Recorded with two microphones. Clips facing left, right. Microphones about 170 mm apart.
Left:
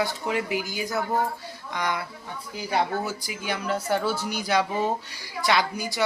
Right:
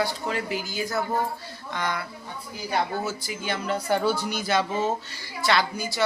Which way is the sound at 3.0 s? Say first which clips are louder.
Right 1 dB; 10° left (ahead or behind).